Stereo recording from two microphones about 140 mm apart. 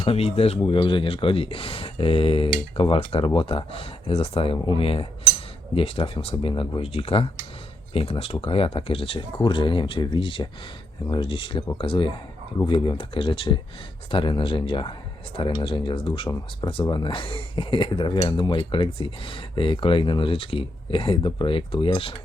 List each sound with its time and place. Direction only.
0.0 s speech: 45° left (ahead or behind)